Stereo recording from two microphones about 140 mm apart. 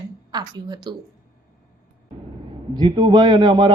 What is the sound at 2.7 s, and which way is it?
Speech, 30° right (ahead or behind).